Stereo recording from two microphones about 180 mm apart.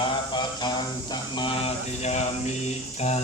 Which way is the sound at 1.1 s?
25° left (ahead or behind).